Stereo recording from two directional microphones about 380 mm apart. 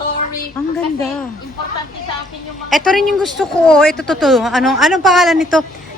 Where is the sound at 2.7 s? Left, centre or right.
Centre.